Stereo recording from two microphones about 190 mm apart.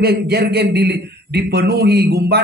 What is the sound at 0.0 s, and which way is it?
A man's voice, 55° right (ahead or behind).